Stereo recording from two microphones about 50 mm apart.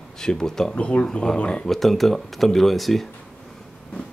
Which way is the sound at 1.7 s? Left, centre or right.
Centre.